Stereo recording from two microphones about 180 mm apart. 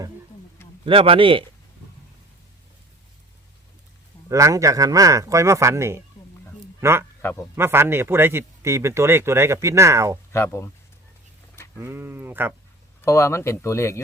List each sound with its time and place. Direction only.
0.9 s a man's voice: 30° right (ahead or behind)
4.3 s speech: 15° right (ahead or behind)
10.3 s speech: 15° left (ahead or behind)
11.8 s speech: 15° right (ahead or behind)
13.1 s speech: 15° left (ahead or behind)